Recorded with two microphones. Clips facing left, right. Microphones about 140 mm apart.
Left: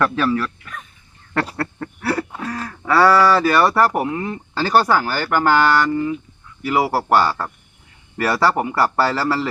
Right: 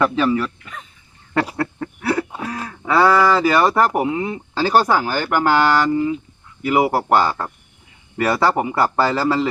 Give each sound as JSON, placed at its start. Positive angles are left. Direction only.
{"t": 0.0, "sound": "speech", "side_deg": -15}